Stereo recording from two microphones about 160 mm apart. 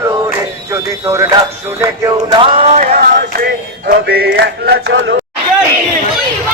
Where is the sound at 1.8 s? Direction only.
20° right (ahead or behind); by 2.8 s 35° right (ahead or behind).